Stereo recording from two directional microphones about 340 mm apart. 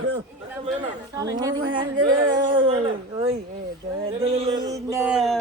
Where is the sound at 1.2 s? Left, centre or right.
Centre.